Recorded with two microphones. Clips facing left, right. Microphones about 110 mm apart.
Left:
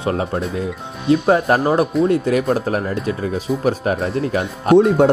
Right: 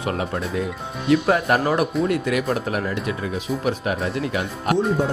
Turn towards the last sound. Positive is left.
turn(degrees=70)  # may be behind; listen again after turning